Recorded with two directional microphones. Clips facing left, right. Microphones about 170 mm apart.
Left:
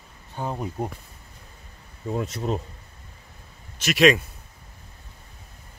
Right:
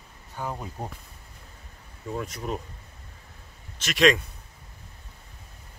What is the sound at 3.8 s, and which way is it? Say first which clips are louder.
Speech: left 3 dB; 5° left (ahead or behind).